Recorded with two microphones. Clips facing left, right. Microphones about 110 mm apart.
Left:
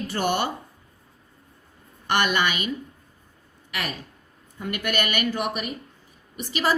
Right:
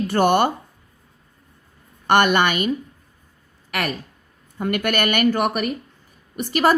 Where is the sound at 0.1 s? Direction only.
55° right (ahead or behind).